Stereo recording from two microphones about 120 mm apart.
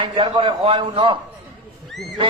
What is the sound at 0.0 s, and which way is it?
A man's voice, 40° right (ahead or behind).